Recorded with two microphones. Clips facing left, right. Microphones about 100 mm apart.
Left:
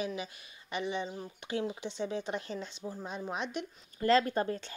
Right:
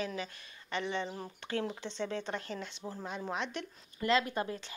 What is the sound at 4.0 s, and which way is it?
Speech, 35° left (ahead or behind).